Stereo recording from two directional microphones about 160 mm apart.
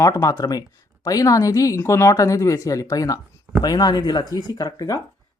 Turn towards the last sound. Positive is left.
turn(degrees=25)  # may be behind; listen again after turning